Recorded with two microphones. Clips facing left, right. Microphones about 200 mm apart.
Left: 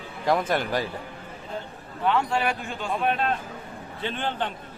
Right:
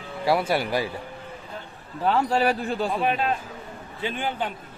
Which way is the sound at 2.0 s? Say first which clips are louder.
Right 3 dB; 35° right (ahead or behind).